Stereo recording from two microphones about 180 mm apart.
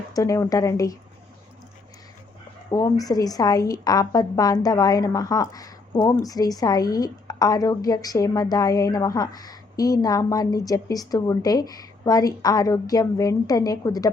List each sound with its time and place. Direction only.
0.1 s a woman's voice: 20° left (ahead or behind)
2.6 s a woman's voice: 20° left (ahead or behind)